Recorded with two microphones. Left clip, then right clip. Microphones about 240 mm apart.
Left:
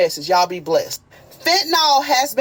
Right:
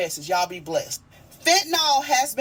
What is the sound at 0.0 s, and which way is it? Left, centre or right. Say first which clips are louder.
A woman's voice: left 8 dB; left.